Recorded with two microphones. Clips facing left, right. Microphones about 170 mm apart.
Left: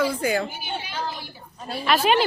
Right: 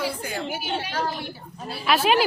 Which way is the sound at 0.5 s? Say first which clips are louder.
Right 4 dB; 85° right.